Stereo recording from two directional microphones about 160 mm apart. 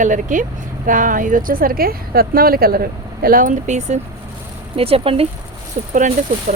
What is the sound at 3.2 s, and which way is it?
Speech, 60° right (ahead or behind).